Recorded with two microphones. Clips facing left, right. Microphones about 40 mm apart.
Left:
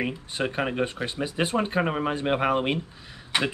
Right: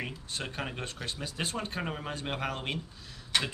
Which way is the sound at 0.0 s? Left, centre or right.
Left.